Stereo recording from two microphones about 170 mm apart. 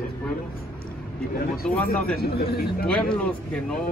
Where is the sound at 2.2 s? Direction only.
65° left (ahead or behind).